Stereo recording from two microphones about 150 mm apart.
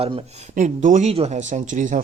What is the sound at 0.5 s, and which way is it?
Speech, 55° right (ahead or behind).